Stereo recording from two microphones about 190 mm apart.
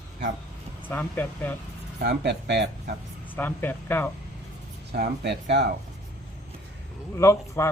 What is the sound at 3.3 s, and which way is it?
Speech, 10° left (ahead or behind).